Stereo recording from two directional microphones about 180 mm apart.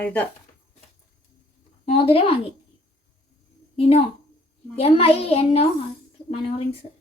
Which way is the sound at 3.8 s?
35° left (ahead or behind).